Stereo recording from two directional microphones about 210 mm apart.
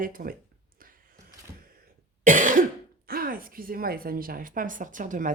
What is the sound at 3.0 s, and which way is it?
A woman's voice, 45° right (ahead or behind).